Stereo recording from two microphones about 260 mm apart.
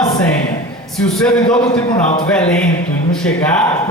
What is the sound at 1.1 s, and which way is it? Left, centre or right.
Speech, centre.